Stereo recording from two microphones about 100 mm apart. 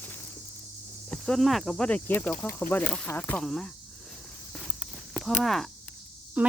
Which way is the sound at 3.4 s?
5° left (ahead or behind).